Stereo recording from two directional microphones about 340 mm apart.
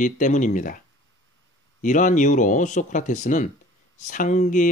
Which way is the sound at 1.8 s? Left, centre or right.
Left.